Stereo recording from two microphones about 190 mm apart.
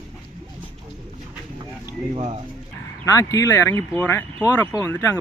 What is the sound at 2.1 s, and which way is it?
Speech, 30° right (ahead or behind).